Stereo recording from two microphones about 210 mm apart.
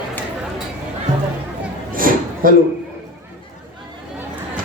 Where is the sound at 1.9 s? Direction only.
40° right (ahead or behind).